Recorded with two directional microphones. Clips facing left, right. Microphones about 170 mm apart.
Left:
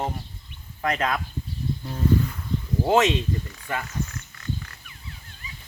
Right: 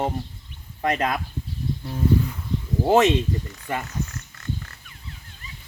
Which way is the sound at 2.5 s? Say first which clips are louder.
Right 1 dB; 75° right (ahead or behind).